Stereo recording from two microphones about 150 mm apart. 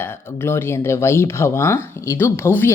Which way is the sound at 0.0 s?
15° left (ahead or behind).